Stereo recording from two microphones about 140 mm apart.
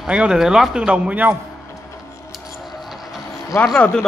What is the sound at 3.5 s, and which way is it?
Speech, 10° left (ahead or behind).